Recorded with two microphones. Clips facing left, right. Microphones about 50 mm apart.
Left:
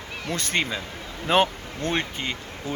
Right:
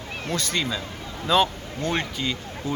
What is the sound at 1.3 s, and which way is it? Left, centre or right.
Speech, left.